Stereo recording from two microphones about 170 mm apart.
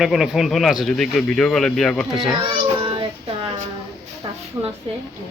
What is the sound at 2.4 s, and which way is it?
Child singing, 30° right (ahead or behind).